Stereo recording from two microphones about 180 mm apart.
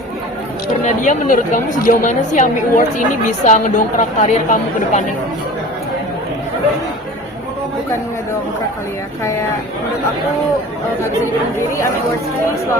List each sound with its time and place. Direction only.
0.9 s a woman's voice: 45° left (ahead or behind)